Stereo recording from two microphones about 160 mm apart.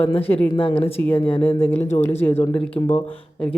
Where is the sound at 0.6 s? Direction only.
35° left (ahead or behind).